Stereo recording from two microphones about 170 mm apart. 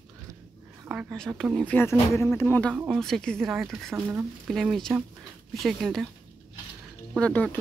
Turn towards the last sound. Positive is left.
turn(degrees=10)  # may be behind; listen again after turning